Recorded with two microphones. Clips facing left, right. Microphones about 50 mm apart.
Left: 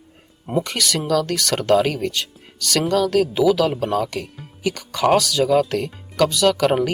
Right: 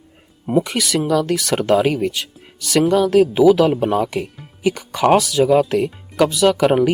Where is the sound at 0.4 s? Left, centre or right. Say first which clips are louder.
Right 4 dB; centre.